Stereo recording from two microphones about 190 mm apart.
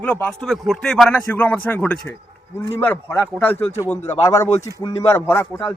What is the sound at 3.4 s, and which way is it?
A man's voice, 10° left (ahead or behind).